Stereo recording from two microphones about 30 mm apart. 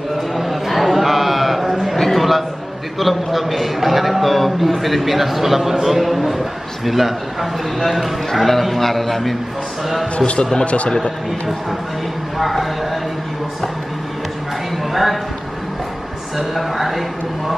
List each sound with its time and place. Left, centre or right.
0.4 s chant: centre
2.0 s a sound: centre
3.0 s a man's voice: centre
10.1 s a man's voice: left
12.4 s a man's voice: centre
14.9 s a man's voice: centre
16.3 s a man's voice: centre